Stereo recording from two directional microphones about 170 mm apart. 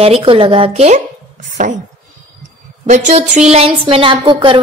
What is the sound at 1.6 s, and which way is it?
Speech, 50° right (ahead or behind).